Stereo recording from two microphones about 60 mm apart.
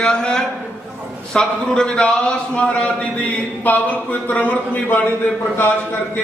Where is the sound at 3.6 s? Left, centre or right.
Left.